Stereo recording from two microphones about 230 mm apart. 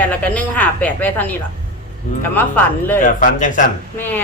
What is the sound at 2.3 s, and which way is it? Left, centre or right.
Speech, centre.